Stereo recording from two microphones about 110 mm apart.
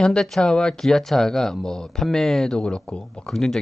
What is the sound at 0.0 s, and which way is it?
Speech, 5° left (ahead or behind).